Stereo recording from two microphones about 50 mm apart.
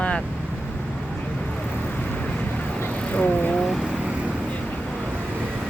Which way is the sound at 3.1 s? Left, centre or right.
Left.